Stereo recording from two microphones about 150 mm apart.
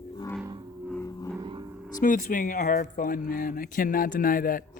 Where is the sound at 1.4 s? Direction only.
30° right (ahead or behind).